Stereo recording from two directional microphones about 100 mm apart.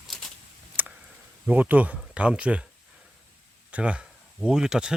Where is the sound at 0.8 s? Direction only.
20° right (ahead or behind).